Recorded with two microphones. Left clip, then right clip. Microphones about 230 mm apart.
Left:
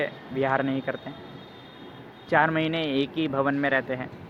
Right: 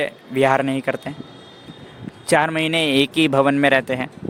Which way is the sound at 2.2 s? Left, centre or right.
Right.